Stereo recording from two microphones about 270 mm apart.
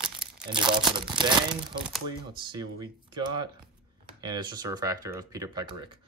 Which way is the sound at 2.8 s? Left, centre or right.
Centre.